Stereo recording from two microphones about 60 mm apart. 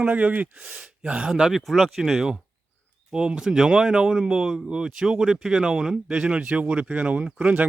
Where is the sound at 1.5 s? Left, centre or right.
Centre.